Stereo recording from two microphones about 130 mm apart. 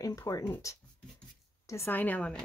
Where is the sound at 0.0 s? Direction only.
25° left (ahead or behind).